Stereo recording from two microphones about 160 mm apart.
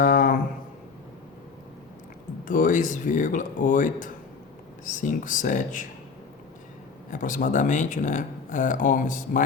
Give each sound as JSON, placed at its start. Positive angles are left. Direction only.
{"t": 0.0, "sound": "a sound", "side_deg": 60}
{"t": 2.5, "sound": "speech", "side_deg": 55}
{"t": 7.1, "sound": "speech", "side_deg": 55}